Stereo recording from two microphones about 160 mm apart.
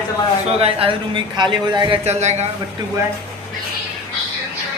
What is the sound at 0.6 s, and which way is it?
Speech, 35° right (ahead or behind).